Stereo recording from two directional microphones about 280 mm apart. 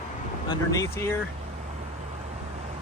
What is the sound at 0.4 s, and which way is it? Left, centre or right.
Speech, centre.